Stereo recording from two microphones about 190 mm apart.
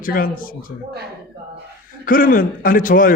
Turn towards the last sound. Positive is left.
turn(degrees=45)  # may be behind; listen again after turning